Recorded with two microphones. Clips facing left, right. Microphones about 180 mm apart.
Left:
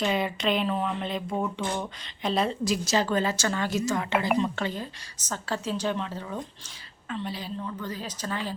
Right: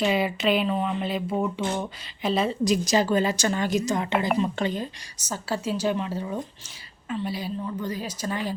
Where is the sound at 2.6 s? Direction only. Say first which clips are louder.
Right 4 dB; 15° right (ahead or behind).